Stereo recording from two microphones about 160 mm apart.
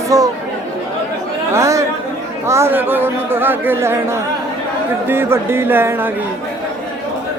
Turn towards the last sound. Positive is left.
turn(degrees=-15)  # may be behind; listen again after turning